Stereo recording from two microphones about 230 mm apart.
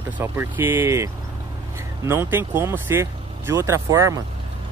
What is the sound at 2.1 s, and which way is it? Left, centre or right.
Speech, centre.